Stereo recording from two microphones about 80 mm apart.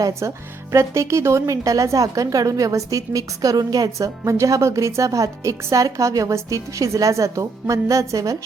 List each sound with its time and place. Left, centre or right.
0.0 s a woman's voice: right